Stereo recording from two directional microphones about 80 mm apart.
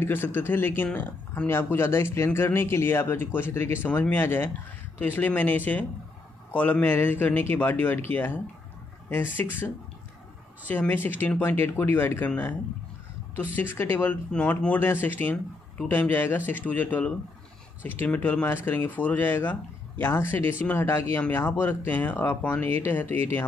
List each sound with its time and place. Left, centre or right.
0.0 s speech: left
10.7 s speech: left
13.6 s speech: left
14.3 s speech: centre